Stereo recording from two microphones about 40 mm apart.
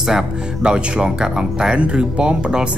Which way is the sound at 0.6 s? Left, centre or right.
Right.